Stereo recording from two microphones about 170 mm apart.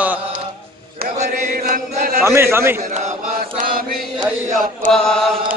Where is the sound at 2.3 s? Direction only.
15° right (ahead or behind).